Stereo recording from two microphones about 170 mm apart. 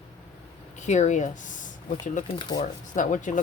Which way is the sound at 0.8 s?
45° left (ahead or behind).